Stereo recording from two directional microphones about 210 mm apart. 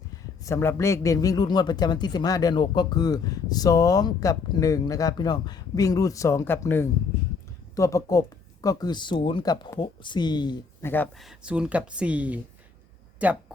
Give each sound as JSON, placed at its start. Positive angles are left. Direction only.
{"t": 0.4, "sound": "speech", "side_deg": 10}
{"t": 11.3, "sound": "speech", "side_deg": -5}